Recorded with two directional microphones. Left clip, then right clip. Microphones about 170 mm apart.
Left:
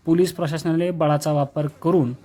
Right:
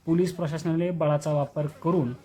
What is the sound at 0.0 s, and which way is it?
Speech, 30° left (ahead or behind).